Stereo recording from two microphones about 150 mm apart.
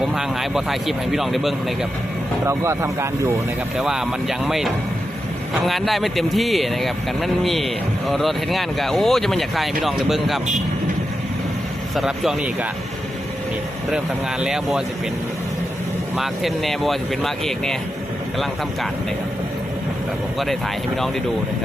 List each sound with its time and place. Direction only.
0.0 s a man's voice: 5° right (ahead or behind)
2.5 s speech: 20° right (ahead or behind)
3.8 s a man's voice: 5° right (ahead or behind)
11.9 s a man's voice: centre (ahead or behind)
13.9 s a man's voice: 5° right (ahead or behind)
16.1 s a man's voice: centre (ahead or behind)